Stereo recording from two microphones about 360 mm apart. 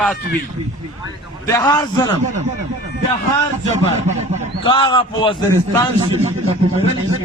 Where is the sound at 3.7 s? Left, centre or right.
Centre.